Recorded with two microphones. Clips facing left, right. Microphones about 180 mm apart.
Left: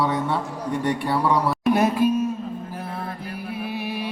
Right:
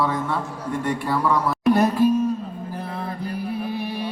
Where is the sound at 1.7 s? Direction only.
15° left (ahead or behind).